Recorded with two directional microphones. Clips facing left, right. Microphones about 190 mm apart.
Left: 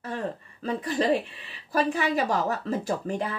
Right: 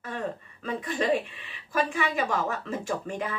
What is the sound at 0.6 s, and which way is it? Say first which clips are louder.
A woman's voice: left 3 dB; 35° left (ahead or behind).